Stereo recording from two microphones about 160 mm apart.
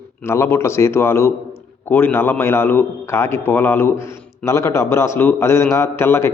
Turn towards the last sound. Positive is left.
turn(degrees=15)  # may be behind; listen again after turning